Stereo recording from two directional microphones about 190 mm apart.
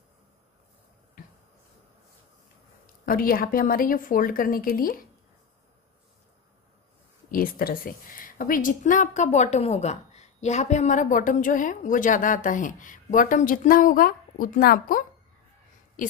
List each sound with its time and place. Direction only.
3.1 s a woman's voice: 50° left (ahead or behind)
7.2 s a woman's voice: 50° left (ahead or behind)